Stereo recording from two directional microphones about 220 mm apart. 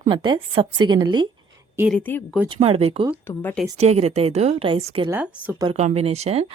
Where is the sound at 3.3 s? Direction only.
5° left (ahead or behind).